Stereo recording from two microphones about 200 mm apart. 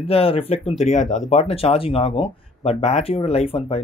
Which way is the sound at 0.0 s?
30° left (ahead or behind).